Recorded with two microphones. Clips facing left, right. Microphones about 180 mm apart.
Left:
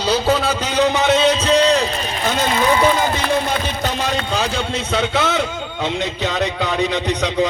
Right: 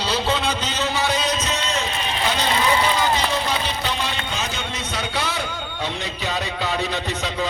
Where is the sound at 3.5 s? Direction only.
45° left (ahead or behind).